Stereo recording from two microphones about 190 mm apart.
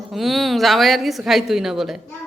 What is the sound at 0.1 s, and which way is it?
A woman's voice, centre (ahead or behind).